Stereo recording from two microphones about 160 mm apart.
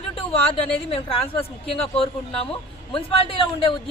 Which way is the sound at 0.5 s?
35° left (ahead or behind).